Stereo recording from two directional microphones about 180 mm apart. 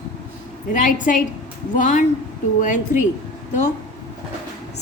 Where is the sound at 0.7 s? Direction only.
45° left (ahead or behind).